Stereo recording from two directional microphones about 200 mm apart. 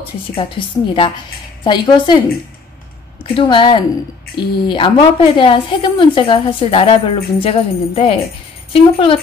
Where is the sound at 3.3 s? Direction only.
25° left (ahead or behind).